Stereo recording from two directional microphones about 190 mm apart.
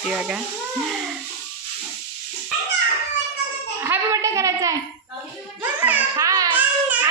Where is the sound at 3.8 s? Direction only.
15° right (ahead or behind).